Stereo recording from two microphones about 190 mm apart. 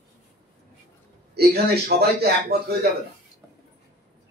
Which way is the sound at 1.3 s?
55° right (ahead or behind).